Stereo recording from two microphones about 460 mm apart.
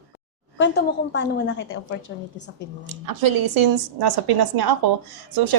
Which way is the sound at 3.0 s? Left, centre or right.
Right.